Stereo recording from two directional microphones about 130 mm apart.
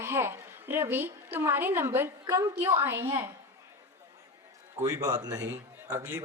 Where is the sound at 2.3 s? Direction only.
30° right (ahead or behind).